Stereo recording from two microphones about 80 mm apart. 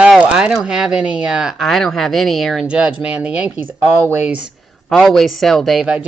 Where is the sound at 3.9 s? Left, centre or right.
Right.